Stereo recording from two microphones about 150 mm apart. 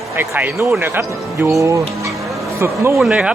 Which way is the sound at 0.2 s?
15° right (ahead or behind).